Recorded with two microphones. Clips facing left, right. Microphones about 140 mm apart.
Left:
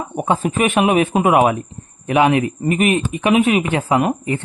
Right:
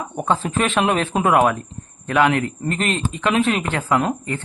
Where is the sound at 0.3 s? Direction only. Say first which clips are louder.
Left 3 dB; 15° left (ahead or behind).